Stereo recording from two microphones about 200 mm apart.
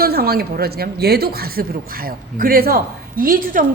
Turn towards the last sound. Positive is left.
turn(degrees=-45)  # may be behind; listen again after turning